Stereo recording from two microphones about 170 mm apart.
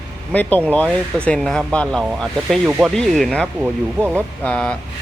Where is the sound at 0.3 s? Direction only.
10° left (ahead or behind).